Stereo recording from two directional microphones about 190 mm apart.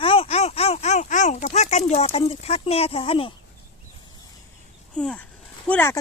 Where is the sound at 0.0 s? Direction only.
30° left (ahead or behind).